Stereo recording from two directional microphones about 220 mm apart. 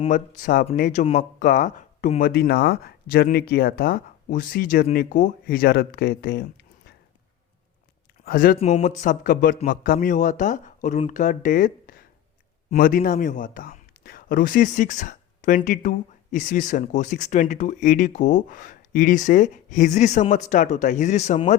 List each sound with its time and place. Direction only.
0.0 s a man's voice: 35° left (ahead or behind)
8.2 s a man's voice: 40° left (ahead or behind)